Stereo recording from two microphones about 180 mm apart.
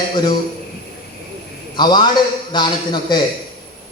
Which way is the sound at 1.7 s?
25° left (ahead or behind).